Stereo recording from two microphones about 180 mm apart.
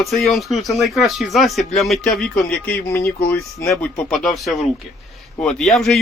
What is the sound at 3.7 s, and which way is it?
Speech, 5° left (ahead or behind).